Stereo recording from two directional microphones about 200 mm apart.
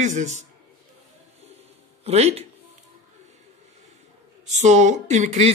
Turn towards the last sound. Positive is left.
turn(degrees=-35)  # may be behind; listen again after turning